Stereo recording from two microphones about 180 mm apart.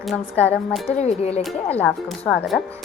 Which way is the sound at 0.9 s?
35° left (ahead or behind).